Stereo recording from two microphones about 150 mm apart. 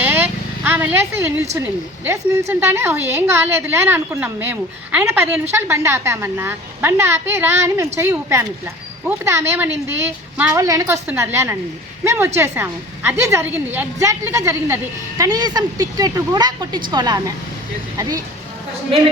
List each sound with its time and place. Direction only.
0.0 s vehicle: 15° right (ahead or behind)
1.5 s a woman's voice: 15° right (ahead or behind)